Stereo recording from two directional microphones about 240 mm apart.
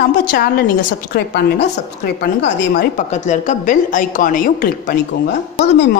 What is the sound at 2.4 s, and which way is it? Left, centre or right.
A woman's voice, left.